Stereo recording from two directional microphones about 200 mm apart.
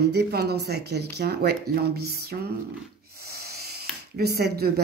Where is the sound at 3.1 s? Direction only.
50° right (ahead or behind).